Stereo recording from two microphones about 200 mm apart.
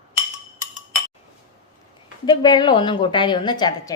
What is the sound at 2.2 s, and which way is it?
A woman's voice, 20° left (ahead or behind).